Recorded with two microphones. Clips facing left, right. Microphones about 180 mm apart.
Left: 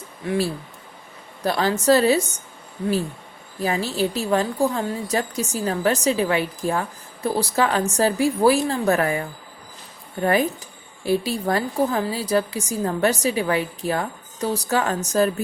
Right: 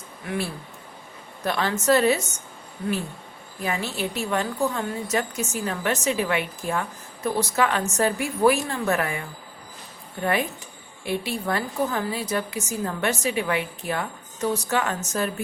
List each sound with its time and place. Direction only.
1.5 s a woman's voice: 35° left (ahead or behind)
3.6 s a woman's voice: 35° left (ahead or behind)
11.0 s a woman's voice: 35° left (ahead or behind)